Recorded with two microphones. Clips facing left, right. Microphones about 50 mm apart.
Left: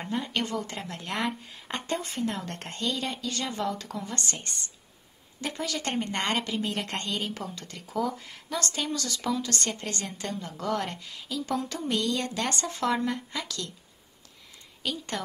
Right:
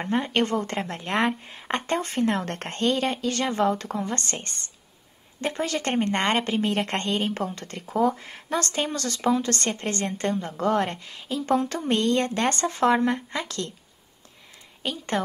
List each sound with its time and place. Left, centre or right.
0.0 s a woman's voice: right
11.6 s a woman's voice: right
11.9 s speech: right
14.8 s speech: right